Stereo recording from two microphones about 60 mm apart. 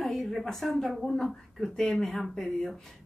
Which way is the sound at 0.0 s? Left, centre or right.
Centre.